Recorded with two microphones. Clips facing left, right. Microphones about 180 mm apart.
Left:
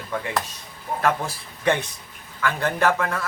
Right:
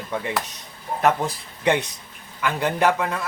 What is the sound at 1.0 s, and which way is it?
A man's voice, 20° right (ahead or behind).